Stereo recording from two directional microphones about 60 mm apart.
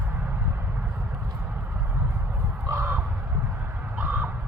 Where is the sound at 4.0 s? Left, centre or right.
Right.